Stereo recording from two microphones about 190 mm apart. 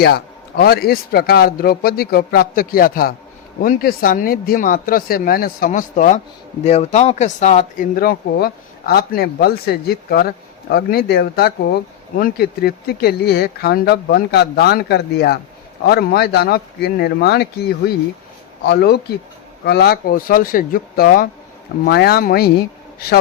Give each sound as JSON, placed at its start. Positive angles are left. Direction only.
{"t": 0.0, "sound": "a man's voice", "side_deg": 55}
{"t": 7.9, "sound": "a man's voice", "side_deg": 55}